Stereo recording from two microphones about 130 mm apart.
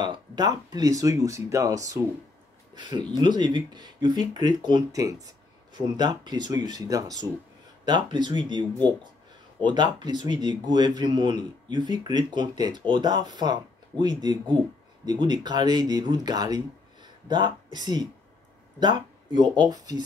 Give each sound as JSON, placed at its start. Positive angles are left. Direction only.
{"t": 0.0, "sound": "speech", "side_deg": -30}
{"t": 9.7, "sound": "speech", "side_deg": -35}